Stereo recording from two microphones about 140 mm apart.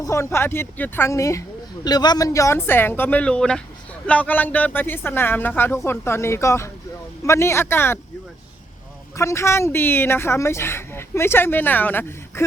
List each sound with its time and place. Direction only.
0.0 s speech: 20° left (ahead or behind)
9.1 s speech: 20° left (ahead or behind)